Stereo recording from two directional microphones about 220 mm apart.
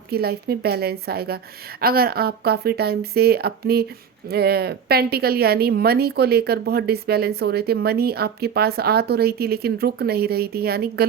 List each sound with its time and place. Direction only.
0.1 s speech: 45° right (ahead or behind)